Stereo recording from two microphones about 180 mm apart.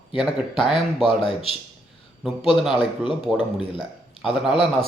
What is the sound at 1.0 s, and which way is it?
Speech, 30° left (ahead or behind).